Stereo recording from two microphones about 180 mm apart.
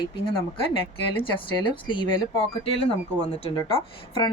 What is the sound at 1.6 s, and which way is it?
Speech, 25° left (ahead or behind).